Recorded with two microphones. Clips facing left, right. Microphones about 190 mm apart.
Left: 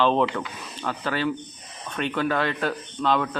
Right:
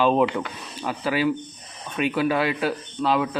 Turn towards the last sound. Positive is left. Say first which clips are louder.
# right 1 dB
turn(degrees=-5)  # may be behind; listen again after turning